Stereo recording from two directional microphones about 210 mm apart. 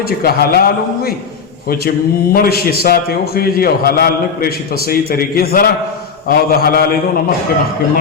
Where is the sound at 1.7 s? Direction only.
45° left (ahead or behind).